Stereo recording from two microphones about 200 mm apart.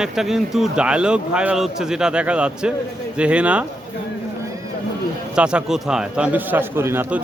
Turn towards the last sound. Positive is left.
turn(degrees=-10)  # may be behind; listen again after turning